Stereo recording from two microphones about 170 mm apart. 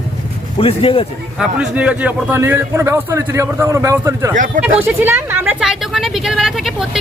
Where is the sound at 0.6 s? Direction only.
35° left (ahead or behind).